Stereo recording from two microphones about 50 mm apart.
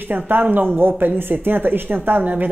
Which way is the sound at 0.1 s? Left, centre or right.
Right.